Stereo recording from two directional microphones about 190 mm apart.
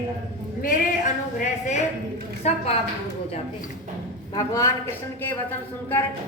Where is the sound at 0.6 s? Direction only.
45° left (ahead or behind).